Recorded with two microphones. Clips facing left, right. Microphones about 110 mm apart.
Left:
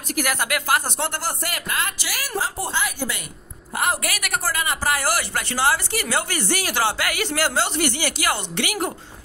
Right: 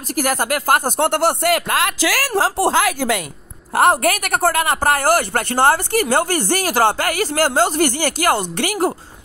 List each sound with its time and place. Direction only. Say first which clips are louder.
0.1 s speech: right 5 dB; 40° right (ahead or behind); by 3.3 s 90° right
3.7 s a man's voice: right 10 dB; 55° right (ahead or behind)